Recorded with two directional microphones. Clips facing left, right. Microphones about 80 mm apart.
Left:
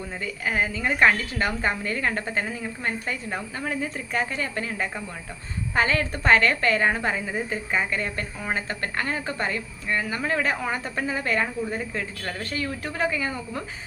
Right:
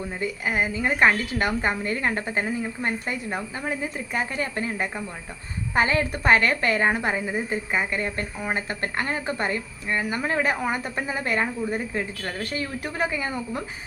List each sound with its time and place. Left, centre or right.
0.2 s speech: right